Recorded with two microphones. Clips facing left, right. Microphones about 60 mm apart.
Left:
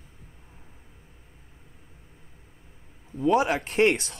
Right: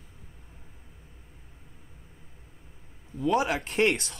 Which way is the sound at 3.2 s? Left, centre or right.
Centre.